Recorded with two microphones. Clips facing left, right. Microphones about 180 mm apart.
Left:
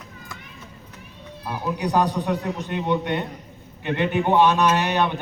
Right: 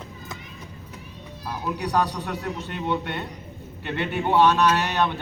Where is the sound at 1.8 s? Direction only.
15° left (ahead or behind).